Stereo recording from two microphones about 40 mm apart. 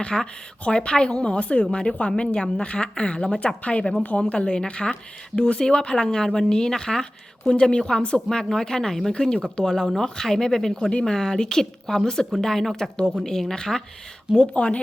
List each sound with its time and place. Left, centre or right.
0.0 s a woman's voice: left
7.5 s a woman's voice: left
7.8 s a woman's voice: centre
14.3 s a woman's voice: left